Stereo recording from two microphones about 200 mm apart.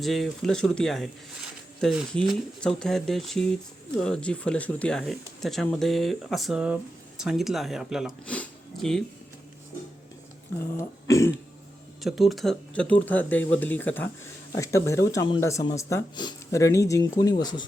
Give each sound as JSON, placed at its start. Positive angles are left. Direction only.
{"t": 0.0, "sound": "speech", "side_deg": 0}
{"t": 10.8, "sound": "speech", "side_deg": 15}
{"t": 12.0, "sound": "speech", "side_deg": 0}